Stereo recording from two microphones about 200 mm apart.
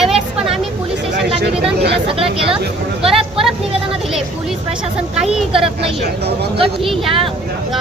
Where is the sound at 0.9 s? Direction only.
60° right (ahead or behind).